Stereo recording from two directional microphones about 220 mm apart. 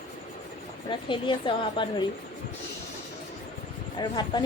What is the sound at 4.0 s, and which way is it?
Speech, 20° left (ahead or behind).